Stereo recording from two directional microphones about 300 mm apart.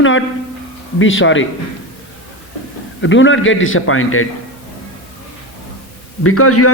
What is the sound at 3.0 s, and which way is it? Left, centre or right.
A man's voice, left.